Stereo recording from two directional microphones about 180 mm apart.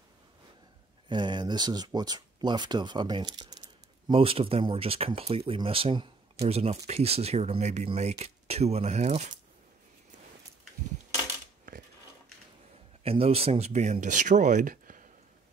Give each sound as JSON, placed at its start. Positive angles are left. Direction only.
{"t": 1.0, "sound": "speech", "side_deg": -25}
{"t": 13.0, "sound": "speech", "side_deg": -30}